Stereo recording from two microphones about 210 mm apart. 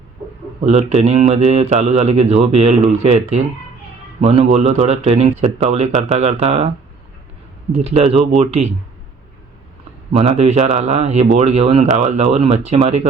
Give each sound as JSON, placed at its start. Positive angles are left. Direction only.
{"t": 0.6, "sound": "speech", "side_deg": -30}
{"t": 7.7, "sound": "speech", "side_deg": -30}
{"t": 10.1, "sound": "speech", "side_deg": -30}